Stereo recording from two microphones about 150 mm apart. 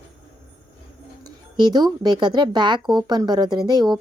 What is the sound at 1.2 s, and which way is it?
A child's voice, 25° right (ahead or behind).